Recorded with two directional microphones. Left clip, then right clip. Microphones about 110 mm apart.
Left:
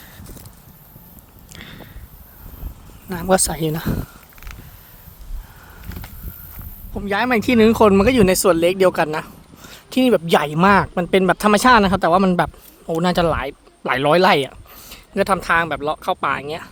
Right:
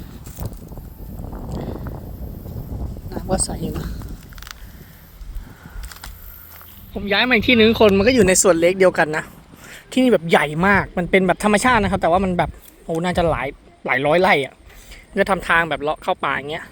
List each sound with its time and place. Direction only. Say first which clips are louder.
3.1 s speech: left 7 dB; 85° left
6.9 s speech: right 2 dB; 15° left (ahead or behind)
8.2 s speech: right 1 dB; 5° left (ahead or behind)
10.0 s speech: even; 20° left (ahead or behind)
13.1 s speech: left 1 dB; 35° left (ahead or behind)
15.1 s speech: even; 15° left (ahead or behind)
15.4 s speech: even; 5° left (ahead or behind)
16.4 s speech: even; 20° left (ahead or behind)